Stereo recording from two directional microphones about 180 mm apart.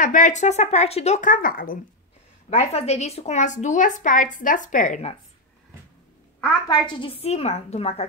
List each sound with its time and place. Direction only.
0.0 s speech: 45° left (ahead or behind)
2.5 s a woman's voice: 35° left (ahead or behind)
6.7 s speech: 25° left (ahead or behind)